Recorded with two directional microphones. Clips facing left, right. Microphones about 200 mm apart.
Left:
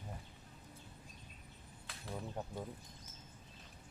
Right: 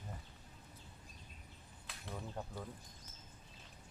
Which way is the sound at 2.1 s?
15° left (ahead or behind).